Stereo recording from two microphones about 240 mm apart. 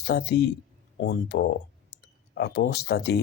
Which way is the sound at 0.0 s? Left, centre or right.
Left.